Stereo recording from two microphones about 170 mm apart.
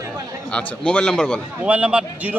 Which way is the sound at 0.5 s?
5° left (ahead or behind).